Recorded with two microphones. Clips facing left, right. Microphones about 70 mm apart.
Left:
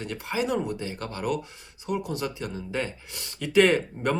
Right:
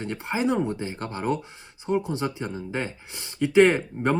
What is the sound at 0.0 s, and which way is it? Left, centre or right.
Speech, right.